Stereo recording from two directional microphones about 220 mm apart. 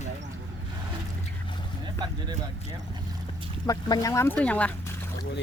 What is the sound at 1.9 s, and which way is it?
Speech, 20° right (ahead or behind).